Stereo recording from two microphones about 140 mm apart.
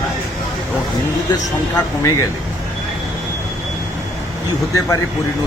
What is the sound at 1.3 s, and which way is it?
Speech, 25° left (ahead or behind).